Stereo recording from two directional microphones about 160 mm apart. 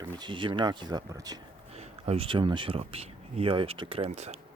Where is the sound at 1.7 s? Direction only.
40° right (ahead or behind).